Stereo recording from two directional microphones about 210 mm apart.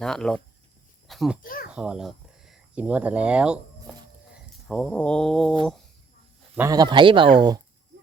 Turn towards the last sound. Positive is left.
turn(degrees=-20)  # may be behind; listen again after turning